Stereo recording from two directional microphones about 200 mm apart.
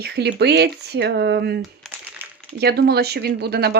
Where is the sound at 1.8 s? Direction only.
10° right (ahead or behind).